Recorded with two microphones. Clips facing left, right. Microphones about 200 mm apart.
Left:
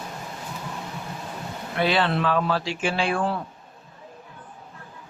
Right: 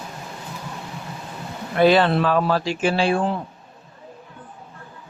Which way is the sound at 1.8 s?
45° right (ahead or behind).